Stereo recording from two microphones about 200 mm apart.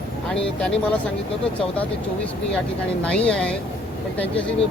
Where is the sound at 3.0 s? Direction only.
5° left (ahead or behind).